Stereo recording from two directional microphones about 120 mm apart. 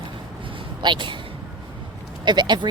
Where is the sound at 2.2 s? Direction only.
35° right (ahead or behind).